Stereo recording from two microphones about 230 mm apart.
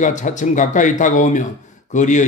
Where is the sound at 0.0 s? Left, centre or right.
Left.